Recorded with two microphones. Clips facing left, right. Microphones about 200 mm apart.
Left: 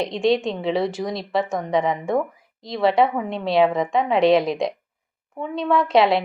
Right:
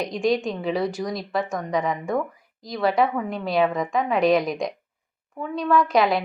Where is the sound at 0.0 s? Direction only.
25° left (ahead or behind).